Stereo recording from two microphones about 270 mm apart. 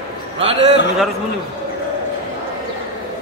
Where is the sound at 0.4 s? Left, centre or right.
Right.